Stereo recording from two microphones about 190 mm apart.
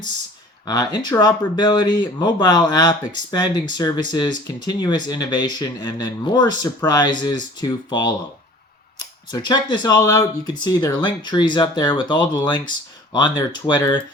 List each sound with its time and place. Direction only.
0.6 s speech: 20° left (ahead or behind)
9.3 s speech: 20° left (ahead or behind)